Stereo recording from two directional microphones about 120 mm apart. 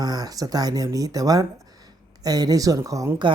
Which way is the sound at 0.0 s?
30° right (ahead or behind).